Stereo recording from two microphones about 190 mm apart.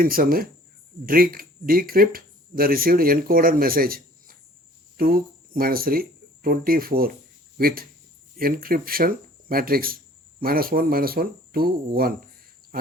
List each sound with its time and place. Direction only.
0.0 s speech: 50° right (ahead or behind)
8.4 s speech: 50° right (ahead or behind)